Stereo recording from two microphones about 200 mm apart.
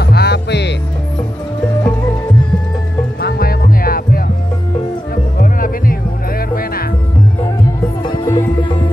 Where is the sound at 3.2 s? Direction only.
50° left (ahead or behind).